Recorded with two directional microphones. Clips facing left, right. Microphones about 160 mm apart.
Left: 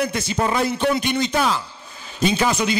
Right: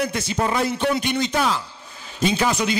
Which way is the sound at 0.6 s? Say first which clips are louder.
Left 1 dB; 10° left (ahead or behind).